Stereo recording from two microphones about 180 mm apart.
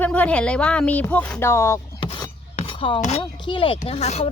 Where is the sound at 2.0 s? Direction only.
25° left (ahead or behind).